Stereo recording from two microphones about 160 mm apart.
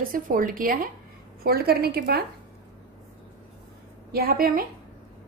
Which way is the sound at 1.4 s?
75° right (ahead or behind).